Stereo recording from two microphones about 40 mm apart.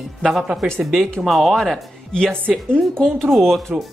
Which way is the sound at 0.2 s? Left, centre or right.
Centre.